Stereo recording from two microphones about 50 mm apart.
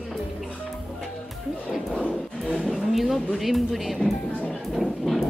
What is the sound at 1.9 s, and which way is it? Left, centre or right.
Music, centre.